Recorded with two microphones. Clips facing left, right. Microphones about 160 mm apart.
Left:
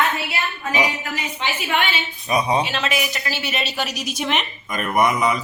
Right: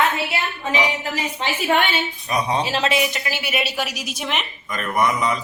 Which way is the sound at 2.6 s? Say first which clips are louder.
Right 3 dB; 30° right (ahead or behind).